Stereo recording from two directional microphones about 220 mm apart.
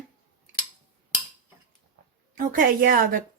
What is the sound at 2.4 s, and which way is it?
Speech, 40° right (ahead or behind).